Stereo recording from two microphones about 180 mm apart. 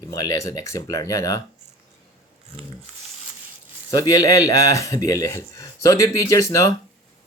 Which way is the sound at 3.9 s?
20° left (ahead or behind).